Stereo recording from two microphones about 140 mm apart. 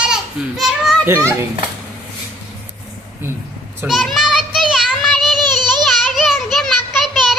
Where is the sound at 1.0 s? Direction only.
15° right (ahead or behind).